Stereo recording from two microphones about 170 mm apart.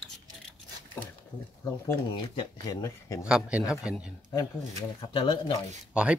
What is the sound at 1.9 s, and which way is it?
Speech, 25° left (ahead or behind).